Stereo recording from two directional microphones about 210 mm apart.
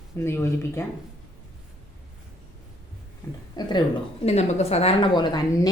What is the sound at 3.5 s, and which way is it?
A woman's voice, 20° left (ahead or behind).